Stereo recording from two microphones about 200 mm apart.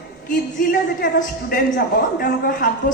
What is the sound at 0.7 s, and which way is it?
A man's voice, 45° left (ahead or behind).